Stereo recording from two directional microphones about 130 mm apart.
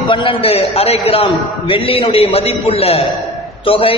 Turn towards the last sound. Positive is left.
turn(degrees=45)  # may be behind; listen again after turning